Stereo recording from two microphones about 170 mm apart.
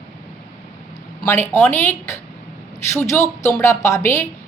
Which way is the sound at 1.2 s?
15° left (ahead or behind).